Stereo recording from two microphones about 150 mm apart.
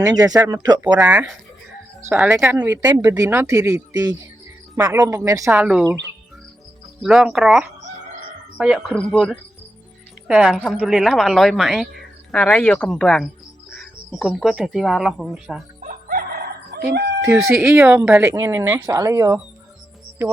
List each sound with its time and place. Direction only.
0.0 s speech: 25° right (ahead or behind)
0.9 s speech: 10° right (ahead or behind)
2.3 s speech: 15° right (ahead or behind)
7.0 s speech: centre (ahead or behind)
9.0 s speech: 5° left (ahead or behind)
15.8 s crowing: 75° right (ahead or behind); by 16.5 s 90° right
16.7 s chicken: 90° right
17.2 s speech: 15° right (ahead or behind)